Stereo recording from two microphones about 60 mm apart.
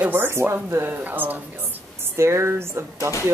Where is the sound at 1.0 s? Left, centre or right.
Right.